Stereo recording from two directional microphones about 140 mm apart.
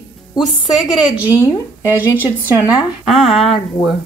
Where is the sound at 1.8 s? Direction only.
15° right (ahead or behind).